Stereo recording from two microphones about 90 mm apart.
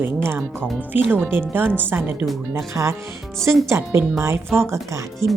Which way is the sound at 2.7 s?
30° right (ahead or behind).